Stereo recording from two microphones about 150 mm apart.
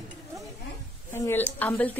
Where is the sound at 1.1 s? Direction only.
15° left (ahead or behind).